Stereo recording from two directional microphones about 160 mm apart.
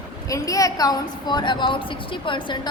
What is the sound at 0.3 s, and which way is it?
A woman's voice, 20° left (ahead or behind).